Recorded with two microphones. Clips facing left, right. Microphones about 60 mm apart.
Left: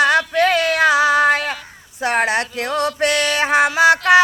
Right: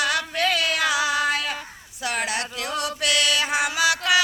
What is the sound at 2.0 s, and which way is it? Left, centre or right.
Music, left.